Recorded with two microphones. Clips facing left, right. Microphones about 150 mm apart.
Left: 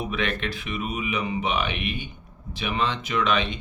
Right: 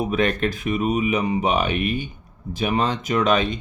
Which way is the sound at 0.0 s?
40° right (ahead or behind).